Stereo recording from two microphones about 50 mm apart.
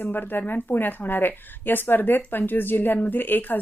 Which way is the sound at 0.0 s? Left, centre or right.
Left.